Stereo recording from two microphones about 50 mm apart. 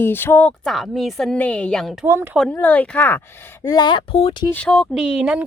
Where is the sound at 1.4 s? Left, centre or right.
Left.